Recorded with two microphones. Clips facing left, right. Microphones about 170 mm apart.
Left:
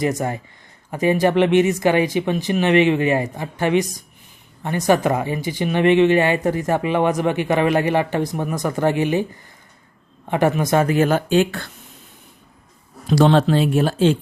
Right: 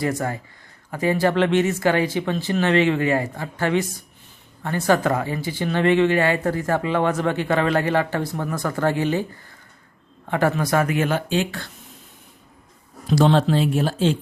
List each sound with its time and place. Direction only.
0.0 s a man's voice: 20° left (ahead or behind)
10.2 s a man's voice: 15° left (ahead or behind)
10.9 s speech: 40° left (ahead or behind)
13.1 s speech: 65° left (ahead or behind)